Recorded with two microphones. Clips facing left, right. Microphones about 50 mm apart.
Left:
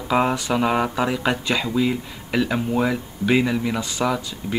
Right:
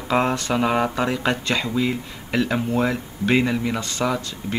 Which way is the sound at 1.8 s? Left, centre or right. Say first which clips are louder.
Left 1 dB; centre.